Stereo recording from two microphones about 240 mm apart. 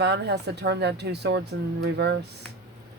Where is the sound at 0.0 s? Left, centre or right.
Right.